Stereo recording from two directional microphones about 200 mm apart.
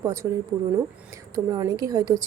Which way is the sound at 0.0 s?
15° right (ahead or behind).